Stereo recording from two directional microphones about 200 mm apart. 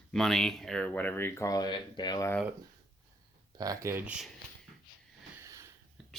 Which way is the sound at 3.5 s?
20° right (ahead or behind).